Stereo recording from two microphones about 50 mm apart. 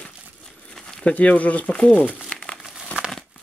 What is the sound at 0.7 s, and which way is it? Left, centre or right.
Crumpling, centre.